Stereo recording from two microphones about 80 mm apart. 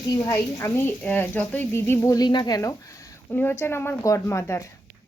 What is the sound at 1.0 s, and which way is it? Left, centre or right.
A woman's voice, left.